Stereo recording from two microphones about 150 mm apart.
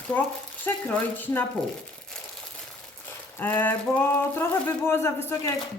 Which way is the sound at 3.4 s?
15° left (ahead or behind).